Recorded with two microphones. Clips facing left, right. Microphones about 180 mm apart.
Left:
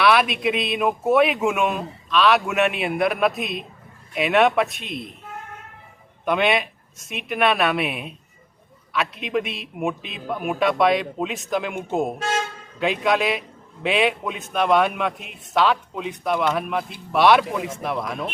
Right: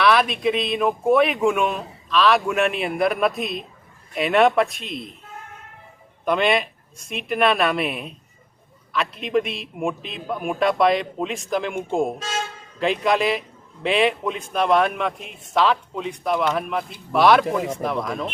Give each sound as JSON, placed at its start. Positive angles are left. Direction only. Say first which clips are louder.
{"t": 0.0, "sound": "a man's voice", "louder": "even", "side_deg": 5}
{"t": 6.2, "sound": "a man's voice", "louder": "right 1 dB", "side_deg": 0}